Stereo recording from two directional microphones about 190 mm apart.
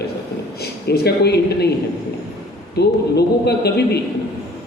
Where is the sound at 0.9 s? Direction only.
60° left (ahead or behind).